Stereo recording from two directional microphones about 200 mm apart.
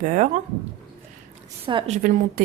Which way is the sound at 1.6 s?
25° right (ahead or behind).